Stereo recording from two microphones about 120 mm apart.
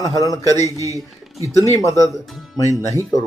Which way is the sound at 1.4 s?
25° right (ahead or behind).